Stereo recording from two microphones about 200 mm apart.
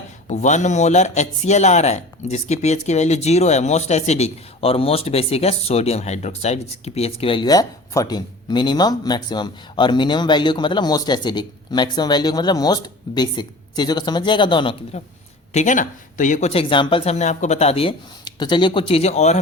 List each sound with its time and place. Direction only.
0.3 s speech: 35° left (ahead or behind)
15.5 s speech: 40° left (ahead or behind)